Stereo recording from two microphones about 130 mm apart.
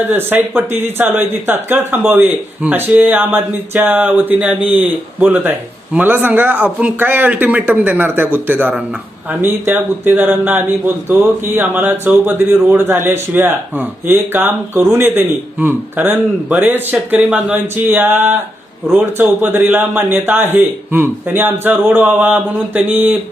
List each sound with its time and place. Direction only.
0.0 s speech: 15° right (ahead or behind)